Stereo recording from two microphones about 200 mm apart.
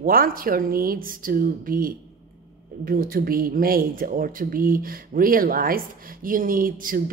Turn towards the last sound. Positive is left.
turn(degrees=-45)  # may be behind; listen again after turning